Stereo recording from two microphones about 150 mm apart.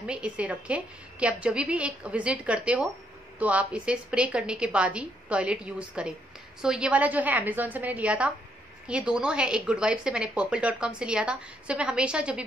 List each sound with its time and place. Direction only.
0.0 s a woman's voice: 5° right (ahead or behind)